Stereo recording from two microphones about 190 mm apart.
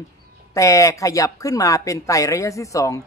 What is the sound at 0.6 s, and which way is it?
Speech, 15° left (ahead or behind).